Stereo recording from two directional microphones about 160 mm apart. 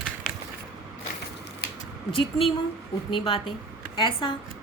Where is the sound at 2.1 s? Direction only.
35° left (ahead or behind).